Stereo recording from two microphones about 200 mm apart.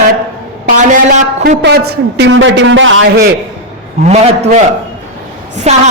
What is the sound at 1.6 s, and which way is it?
Speech, 55° right (ahead or behind).